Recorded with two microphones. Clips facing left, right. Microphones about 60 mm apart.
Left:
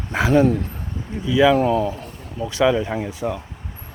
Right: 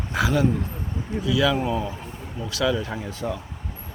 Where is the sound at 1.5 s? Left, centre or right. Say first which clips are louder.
Left 7 dB; left.